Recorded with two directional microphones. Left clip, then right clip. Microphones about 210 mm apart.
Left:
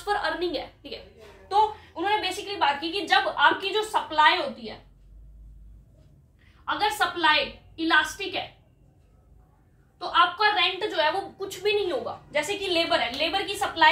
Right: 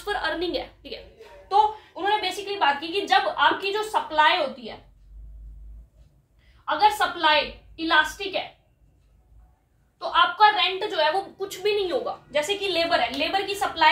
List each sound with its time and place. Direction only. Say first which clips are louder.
0.0 s a woman's voice: even; 15° right (ahead or behind)
6.6 s a woman's voice: right 4 dB; 5° right (ahead or behind)
9.9 s a woman's voice: right 2 dB; 5° right (ahead or behind)